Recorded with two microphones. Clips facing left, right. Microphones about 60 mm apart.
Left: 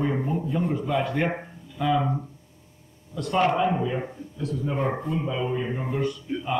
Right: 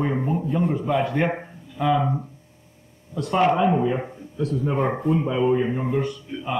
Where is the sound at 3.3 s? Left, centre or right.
Centre.